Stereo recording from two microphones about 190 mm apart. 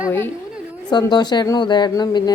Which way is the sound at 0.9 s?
20° left (ahead or behind).